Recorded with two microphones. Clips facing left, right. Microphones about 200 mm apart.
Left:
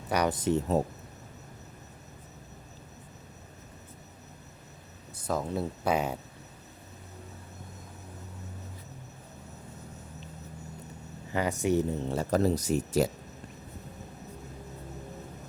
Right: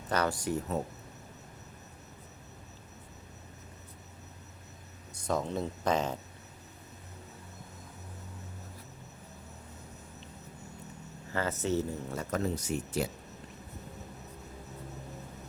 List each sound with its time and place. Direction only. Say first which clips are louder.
0.1 s speech: left 4 dB; 15° left (ahead or behind)
5.1 s speech: left 1 dB; 5° left (ahead or behind)
11.3 s speech: left 4 dB; 15° left (ahead or behind)
12.0 s speech: left 7 dB; 30° left (ahead or behind)